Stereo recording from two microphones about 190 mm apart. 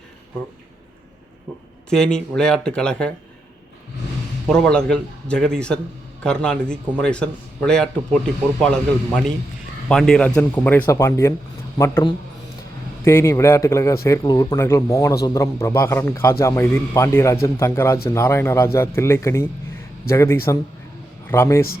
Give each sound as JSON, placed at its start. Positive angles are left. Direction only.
{"t": 1.9, "sound": "a man's voice", "side_deg": 5}
{"t": 4.4, "sound": "a man's voice", "side_deg": 5}
{"t": 13.1, "sound": "a man's voice", "side_deg": 15}